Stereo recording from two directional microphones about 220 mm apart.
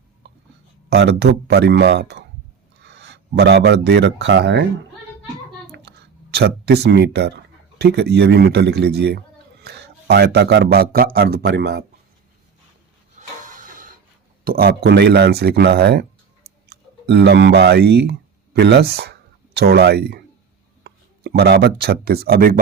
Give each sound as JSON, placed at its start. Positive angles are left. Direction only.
{"t": 0.9, "sound": "speech", "side_deg": -50}
{"t": 6.3, "sound": "speech", "side_deg": -50}
{"t": 13.1, "sound": "a sound", "side_deg": -35}
{"t": 14.4, "sound": "speech", "side_deg": -40}